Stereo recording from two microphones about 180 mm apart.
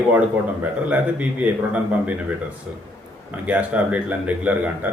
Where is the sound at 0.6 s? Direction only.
10° right (ahead or behind).